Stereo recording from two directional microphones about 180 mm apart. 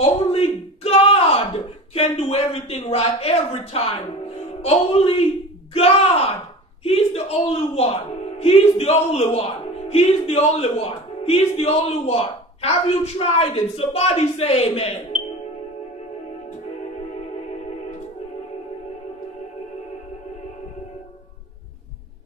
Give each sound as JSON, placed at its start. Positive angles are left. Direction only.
{"t": 0.0, "sound": "a woman's voice", "side_deg": 35}